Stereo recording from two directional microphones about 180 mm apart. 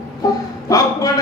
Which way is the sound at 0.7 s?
20° left (ahead or behind).